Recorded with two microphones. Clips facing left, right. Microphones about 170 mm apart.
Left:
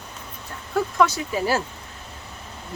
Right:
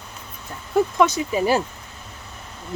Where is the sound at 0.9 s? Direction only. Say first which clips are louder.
Right 2 dB; 20° right (ahead or behind).